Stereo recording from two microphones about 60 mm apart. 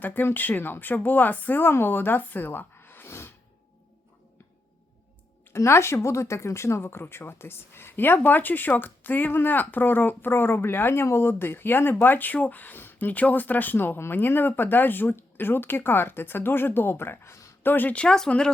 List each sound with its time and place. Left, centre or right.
0.0 s speech: left
3.1 s a sound: left
5.5 s speech: left
17.9 s speech: centre